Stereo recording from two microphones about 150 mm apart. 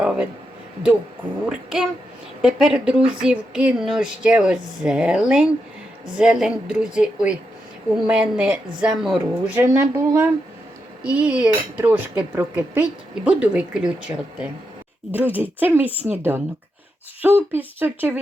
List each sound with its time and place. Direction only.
0.0 s a sound: 5° right (ahead or behind)
1.5 s a woman's voice: 5° right (ahead or behind)
9.6 s speech: 15° right (ahead or behind)